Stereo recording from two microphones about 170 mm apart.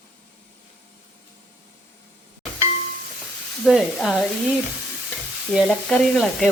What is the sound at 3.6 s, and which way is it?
Speech, centre (ahead or behind).